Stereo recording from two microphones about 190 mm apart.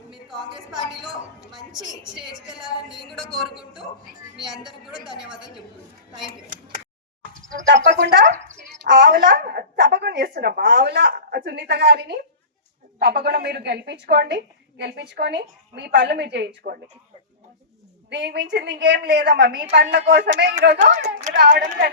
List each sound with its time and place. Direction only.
1.5 s speech: centre (ahead or behind)
3.1 s speech: centre (ahead or behind)
7.7 s a woman's voice: 70° right (ahead or behind)
18.1 s a woman's voice: 60° right (ahead or behind)